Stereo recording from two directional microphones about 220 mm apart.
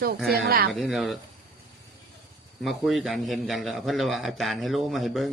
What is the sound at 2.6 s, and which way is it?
Speech, centre (ahead or behind).